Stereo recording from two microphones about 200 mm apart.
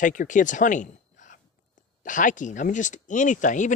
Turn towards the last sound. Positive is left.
turn(degrees=40)  # may be behind; listen again after turning